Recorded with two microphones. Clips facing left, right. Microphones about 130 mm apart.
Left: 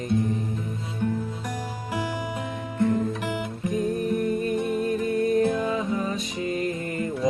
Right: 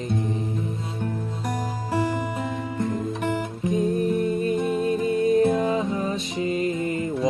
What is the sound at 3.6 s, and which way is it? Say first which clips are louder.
Music: right 3 dB; 25° right (ahead or behind).